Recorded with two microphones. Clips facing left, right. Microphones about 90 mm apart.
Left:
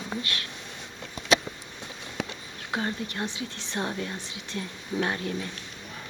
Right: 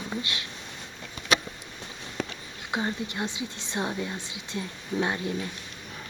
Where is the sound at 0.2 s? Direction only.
15° right (ahead or behind).